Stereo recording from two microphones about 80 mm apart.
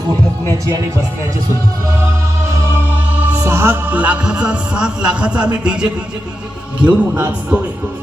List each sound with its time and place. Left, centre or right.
2.5 s music: right
3.2 s music: centre
3.4 s music: right